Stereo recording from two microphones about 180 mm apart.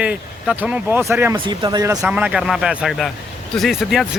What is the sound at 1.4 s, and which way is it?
Speech, 25° right (ahead or behind).